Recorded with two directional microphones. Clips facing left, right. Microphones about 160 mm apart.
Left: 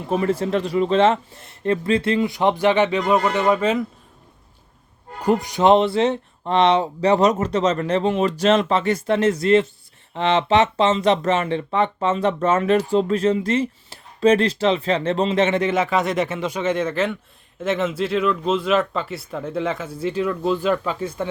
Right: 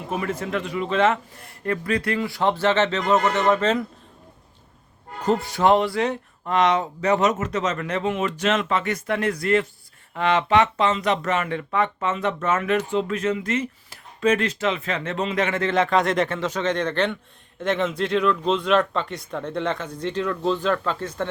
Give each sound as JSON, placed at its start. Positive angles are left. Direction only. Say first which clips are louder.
{"t": 0.1, "sound": "speech", "louder": "left 6 dB", "side_deg": 30}
{"t": 5.2, "sound": "speech", "louder": "left 3 dB", "side_deg": 15}
{"t": 15.7, "sound": "speech", "louder": "even", "side_deg": 5}